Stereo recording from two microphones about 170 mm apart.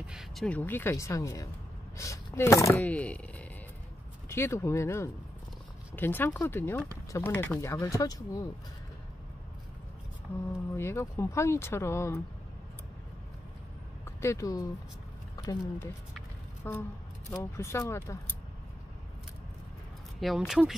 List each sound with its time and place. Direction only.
0.0 s speech: 5° right (ahead or behind); by 8.5 s 20° left (ahead or behind)
10.8 s speech: 15° left (ahead or behind)
14.0 s speech: 15° left (ahead or behind)
20.2 s speech: centre (ahead or behind)